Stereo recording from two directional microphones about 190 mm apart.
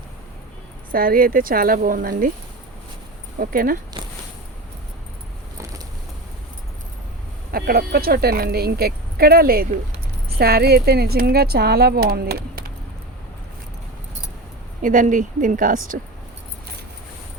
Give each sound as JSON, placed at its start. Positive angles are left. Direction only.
{"t": 0.9, "sound": "speech", "side_deg": -50}
{"t": 3.4, "sound": "speech", "side_deg": -50}
{"t": 4.0, "sound": "a sound", "side_deg": -25}
{"t": 7.5, "sound": "speech", "side_deg": -55}
{"t": 14.8, "sound": "speech", "side_deg": -45}